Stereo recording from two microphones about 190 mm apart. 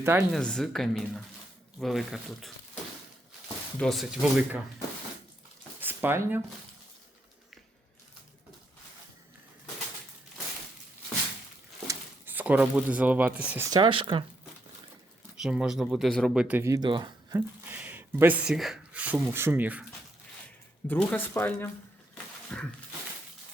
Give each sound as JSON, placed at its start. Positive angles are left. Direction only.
{"t": 0.0, "sound": "speech", "side_deg": -15}
{"t": 0.3, "sound": "speech", "side_deg": 5}
{"t": 3.8, "sound": "speech", "side_deg": 0}
{"t": 5.8, "sound": "speech", "side_deg": -10}
{"t": 11.9, "sound": "speech", "side_deg": -10}
{"t": 13.7, "sound": "speech", "side_deg": -25}
{"t": 15.4, "sound": "speech", "side_deg": -5}
{"t": 17.7, "sound": "speech", "side_deg": -10}
{"t": 20.8, "sound": "speech", "side_deg": 10}
{"t": 22.5, "sound": "a sound", "side_deg": 5}